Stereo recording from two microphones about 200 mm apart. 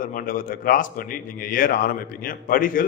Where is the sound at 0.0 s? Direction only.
45° left (ahead or behind).